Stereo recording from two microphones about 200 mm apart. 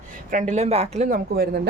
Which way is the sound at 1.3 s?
55° right (ahead or behind).